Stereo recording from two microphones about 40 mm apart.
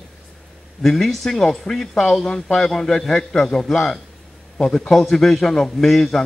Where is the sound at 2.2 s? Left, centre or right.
Centre.